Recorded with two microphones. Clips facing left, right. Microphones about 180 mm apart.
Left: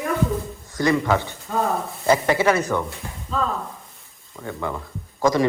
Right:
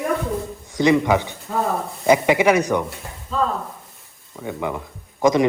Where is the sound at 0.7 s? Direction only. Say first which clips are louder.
Right 3 dB; 20° right (ahead or behind).